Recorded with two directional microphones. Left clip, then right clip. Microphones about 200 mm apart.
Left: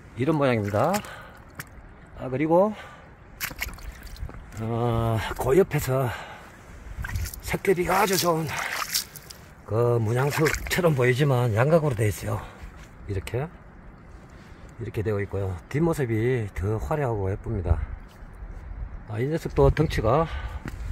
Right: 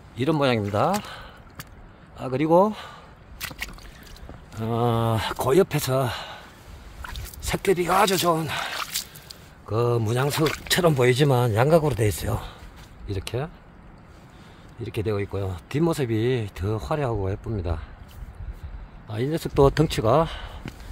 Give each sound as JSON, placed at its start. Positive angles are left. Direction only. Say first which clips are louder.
{"t": 0.2, "sound": "speech", "louder": "right 1 dB", "side_deg": -5}
{"t": 2.1, "sound": "speech", "louder": "right 2 dB", "side_deg": -15}
{"t": 3.3, "sound": "rowboat", "louder": "left 1 dB", "side_deg": -5}
{"t": 4.6, "sound": "speech", "louder": "right 3 dB", "side_deg": -20}
{"t": 7.4, "sound": "speech", "louder": "right 1 dB", "side_deg": -10}
{"t": 9.3, "sound": "a sound", "louder": "right 1 dB", "side_deg": 0}
{"t": 10.1, "sound": "speech", "louder": "even", "side_deg": -10}
{"t": 14.8, "sound": "speech", "louder": "right 1 dB", "side_deg": -10}
{"t": 19.0, "sound": "speech", "louder": "right 1 dB", "side_deg": -10}